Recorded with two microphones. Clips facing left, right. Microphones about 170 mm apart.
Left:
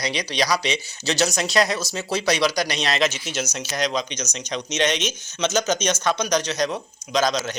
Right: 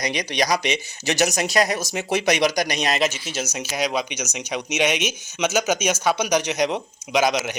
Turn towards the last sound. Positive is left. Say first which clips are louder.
# right 1 dB
turn(degrees=-15)  # may be behind; listen again after turning